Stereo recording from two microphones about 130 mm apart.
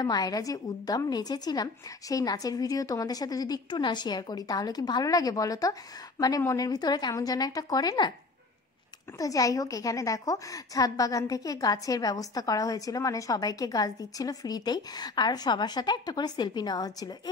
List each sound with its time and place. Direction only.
0.0 s a woman's voice: 30° left (ahead or behind)
9.2 s a woman's voice: 25° left (ahead or behind)